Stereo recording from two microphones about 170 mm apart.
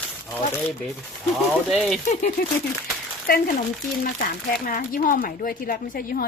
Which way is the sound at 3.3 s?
60° left (ahead or behind).